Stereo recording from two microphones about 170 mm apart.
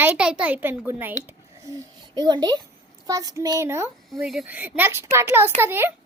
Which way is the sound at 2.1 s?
25° right (ahead or behind).